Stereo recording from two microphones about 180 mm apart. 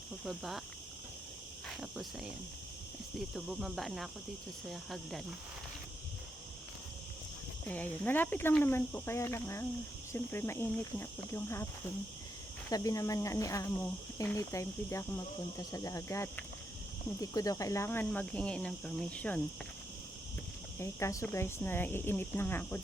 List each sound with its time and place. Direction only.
0.3 s cricket: centre (ahead or behind)
1.7 s speech: centre (ahead or behind)
3.2 s cricket: centre (ahead or behind)
7.7 s speech: 10° left (ahead or behind)
12.7 s speech: 20° left (ahead or behind)
20.7 s speech: 15° left (ahead or behind)